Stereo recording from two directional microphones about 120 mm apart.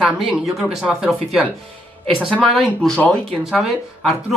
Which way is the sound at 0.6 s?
5° right (ahead or behind).